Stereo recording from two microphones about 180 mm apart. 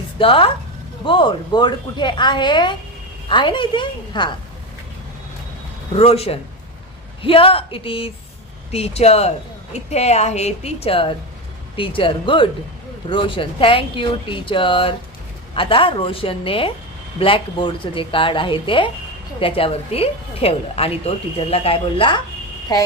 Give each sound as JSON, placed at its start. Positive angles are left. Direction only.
{"t": 0.2, "sound": "speech", "side_deg": 30}
{"t": 5.9, "sound": "speech", "side_deg": 35}